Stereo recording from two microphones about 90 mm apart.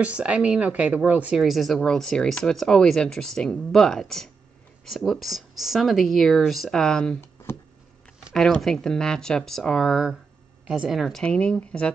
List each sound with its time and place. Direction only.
0.0 s speech: 15° right (ahead or behind)
1.4 s speech: centre (ahead or behind)
7.5 s a sound: 30° left (ahead or behind)
8.4 s speech: 5° left (ahead or behind)